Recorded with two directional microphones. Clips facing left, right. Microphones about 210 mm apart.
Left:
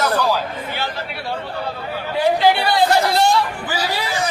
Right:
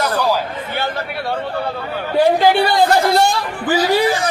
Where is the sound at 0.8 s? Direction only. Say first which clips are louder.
Right 4 dB; 50° right (ahead or behind).